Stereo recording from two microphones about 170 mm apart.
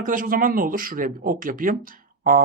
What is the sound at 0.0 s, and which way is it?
Speech, 55° right (ahead or behind).